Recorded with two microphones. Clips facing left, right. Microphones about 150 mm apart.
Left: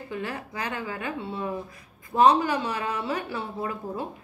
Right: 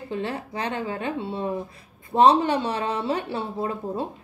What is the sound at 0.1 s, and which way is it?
Speech, 25° right (ahead or behind).